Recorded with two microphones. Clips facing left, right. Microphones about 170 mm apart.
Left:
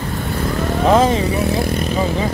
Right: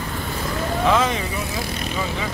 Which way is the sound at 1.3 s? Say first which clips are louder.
Left 10 dB; 70° left (ahead or behind).